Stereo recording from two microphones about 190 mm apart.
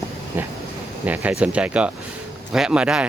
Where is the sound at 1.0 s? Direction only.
10° right (ahead or behind).